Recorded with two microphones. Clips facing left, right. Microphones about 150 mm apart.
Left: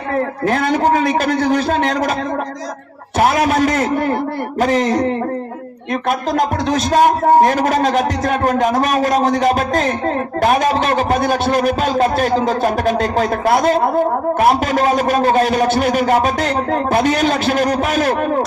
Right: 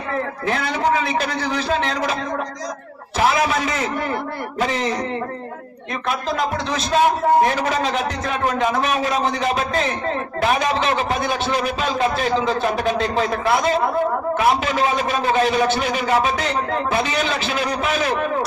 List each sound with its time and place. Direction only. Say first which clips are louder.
0.1 s a man's voice: left 6 dB; 45° left (ahead or behind)
3.2 s a man's voice: left 5 dB; 50° left (ahead or behind)